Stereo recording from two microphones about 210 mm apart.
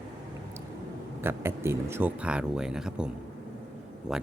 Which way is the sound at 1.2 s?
10° right (ahead or behind).